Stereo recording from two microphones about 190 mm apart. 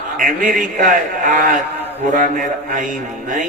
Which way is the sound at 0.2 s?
45° right (ahead or behind).